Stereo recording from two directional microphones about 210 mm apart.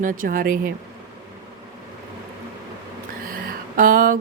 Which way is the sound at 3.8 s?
40° right (ahead or behind).